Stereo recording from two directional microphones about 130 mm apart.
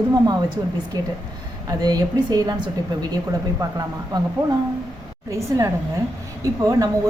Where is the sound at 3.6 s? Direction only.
30° right (ahead or behind).